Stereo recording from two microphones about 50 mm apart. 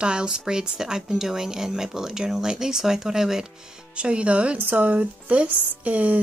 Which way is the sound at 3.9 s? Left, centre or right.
Right.